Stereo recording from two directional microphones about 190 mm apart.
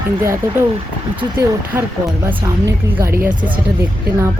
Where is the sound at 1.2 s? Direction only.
10° right (ahead or behind).